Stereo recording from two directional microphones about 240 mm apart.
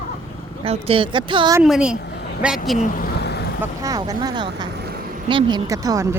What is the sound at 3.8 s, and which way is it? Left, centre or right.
Speech, centre.